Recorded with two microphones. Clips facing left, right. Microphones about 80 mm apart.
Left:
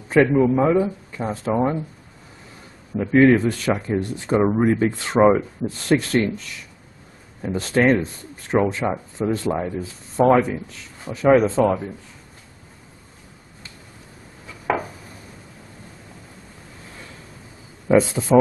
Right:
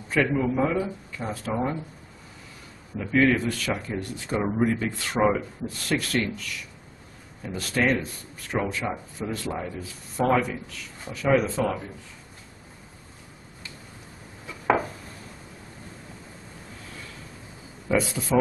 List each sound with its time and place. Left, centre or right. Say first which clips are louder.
0.1 s speech: left 8 dB; left
3.0 s speech: left 7 dB; left
7.4 s speech: left 7 dB; left
14.7 s a sound: right 1 dB; centre
17.8 s speech: left 8 dB; left